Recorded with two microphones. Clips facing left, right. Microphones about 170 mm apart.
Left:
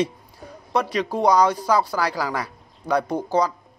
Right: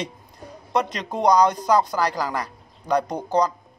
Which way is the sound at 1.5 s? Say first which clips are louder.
Right 1 dB; 20° right (ahead or behind).